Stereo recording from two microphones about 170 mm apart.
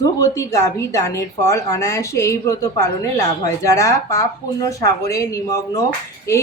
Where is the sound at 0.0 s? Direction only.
20° left (ahead or behind).